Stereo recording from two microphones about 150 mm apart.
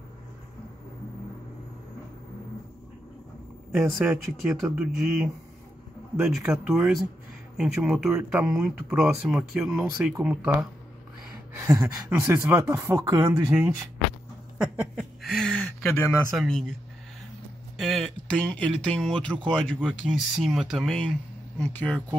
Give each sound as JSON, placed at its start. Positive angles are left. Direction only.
{"t": 3.7, "sound": "speech", "side_deg": -5}
{"t": 14.6, "sound": "a sound", "side_deg": -5}
{"t": 16.3, "sound": "speech", "side_deg": 5}
{"t": 17.7, "sound": "speech", "side_deg": 0}